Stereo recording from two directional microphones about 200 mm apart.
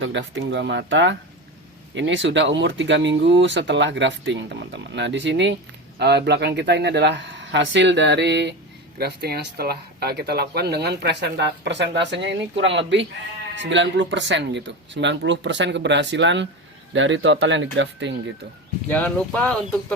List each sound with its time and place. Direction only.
0.0 s speech: 65° right (ahead or behind)
18.9 s speech: 10° left (ahead or behind)